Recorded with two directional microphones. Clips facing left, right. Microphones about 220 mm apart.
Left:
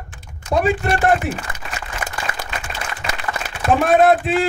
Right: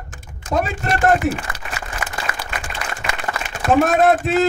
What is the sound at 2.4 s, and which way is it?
Applause, 35° right (ahead or behind).